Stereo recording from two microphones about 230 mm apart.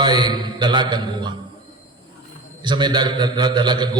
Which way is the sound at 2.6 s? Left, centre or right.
Centre.